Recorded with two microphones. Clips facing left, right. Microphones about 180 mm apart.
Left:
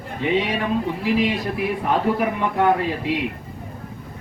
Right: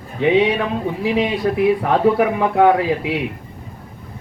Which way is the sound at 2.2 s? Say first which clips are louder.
Right 6 dB; 70° right (ahead or behind).